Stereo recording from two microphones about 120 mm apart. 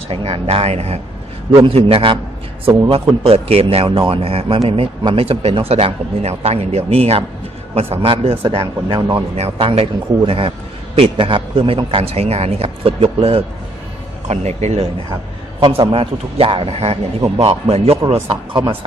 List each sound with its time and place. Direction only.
0.1 s speech: 55° right (ahead or behind)
1.6 s speech: 50° right (ahead or behind)
14.2 s speech: 65° right (ahead or behind)
15.8 s speech: 45° right (ahead or behind)